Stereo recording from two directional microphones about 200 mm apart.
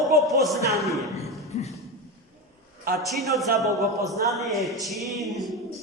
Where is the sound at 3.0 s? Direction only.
Centre (ahead or behind).